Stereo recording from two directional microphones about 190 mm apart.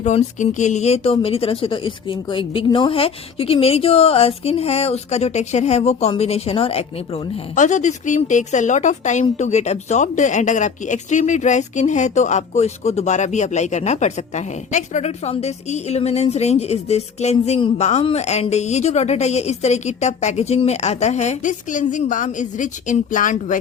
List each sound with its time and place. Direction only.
0.0 s speech: 35° left (ahead or behind)